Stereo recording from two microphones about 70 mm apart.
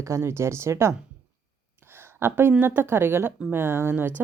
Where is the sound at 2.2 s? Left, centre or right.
Right.